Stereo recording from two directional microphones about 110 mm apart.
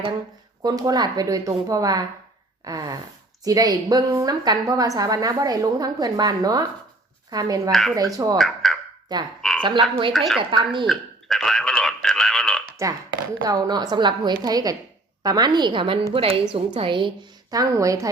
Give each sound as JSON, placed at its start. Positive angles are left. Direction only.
{"t": 0.6, "sound": "a woman's voice", "side_deg": -35}
{"t": 7.7, "sound": "a woman's voice", "side_deg": 0}
{"t": 7.9, "sound": "a woman's voice", "side_deg": -35}
{"t": 8.4, "sound": "speech", "side_deg": 0}
{"t": 9.1, "sound": "a woman's voice", "side_deg": -40}
{"t": 9.6, "sound": "frog", "side_deg": -45}
{"t": 10.1, "sound": "a woman's voice", "side_deg": 0}
{"t": 10.5, "sound": "a woman's voice", "side_deg": -45}
{"t": 10.8, "sound": "a sound", "side_deg": 5}
{"t": 13.5, "sound": "a woman's voice", "side_deg": -35}
{"t": 16.1, "sound": "a woman's voice", "side_deg": -60}
{"t": 17.5, "sound": "a woman's voice", "side_deg": -30}